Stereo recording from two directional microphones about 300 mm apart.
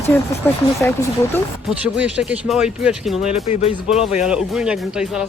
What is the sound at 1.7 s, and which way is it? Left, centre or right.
Speech, centre.